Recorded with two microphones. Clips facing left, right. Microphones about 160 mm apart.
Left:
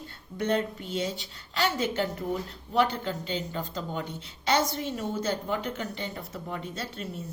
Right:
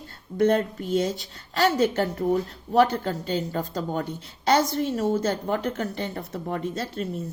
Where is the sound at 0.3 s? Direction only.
45° right (ahead or behind).